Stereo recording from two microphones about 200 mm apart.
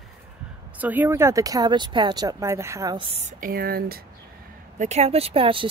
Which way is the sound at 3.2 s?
40° right (ahead or behind).